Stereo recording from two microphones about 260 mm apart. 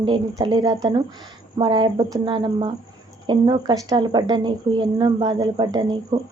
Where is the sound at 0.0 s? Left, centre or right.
Centre.